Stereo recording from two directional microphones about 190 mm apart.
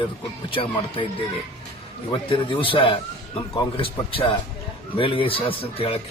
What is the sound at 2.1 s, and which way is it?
A man's voice, 25° left (ahead or behind).